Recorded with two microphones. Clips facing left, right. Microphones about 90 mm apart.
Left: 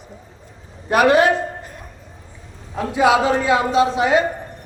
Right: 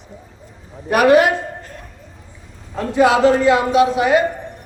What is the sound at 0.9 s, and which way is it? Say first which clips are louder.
Speech: right 2 dB; 25° left (ahead or behind).